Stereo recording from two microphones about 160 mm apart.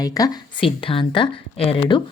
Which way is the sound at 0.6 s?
35° left (ahead or behind).